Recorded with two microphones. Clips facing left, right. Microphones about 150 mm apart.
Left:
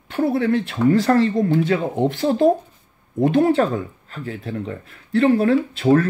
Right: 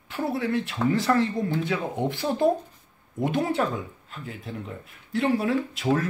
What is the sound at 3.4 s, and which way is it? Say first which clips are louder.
Speech: left 8 dB; 80° left.